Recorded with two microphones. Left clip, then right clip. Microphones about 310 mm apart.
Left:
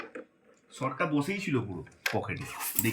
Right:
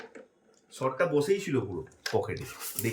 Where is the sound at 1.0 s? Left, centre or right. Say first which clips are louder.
Right 5 dB; centre.